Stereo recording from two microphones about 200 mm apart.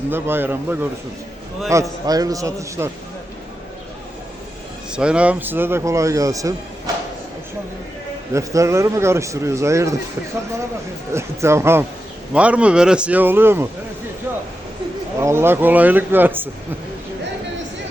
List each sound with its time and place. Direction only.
0.1 s speech: 10° right (ahead or behind)
4.9 s speech: 5° right (ahead or behind)
8.3 s speech: 15° right (ahead or behind)
11.1 s speech: 15° right (ahead or behind)
15.2 s speech: 10° right (ahead or behind)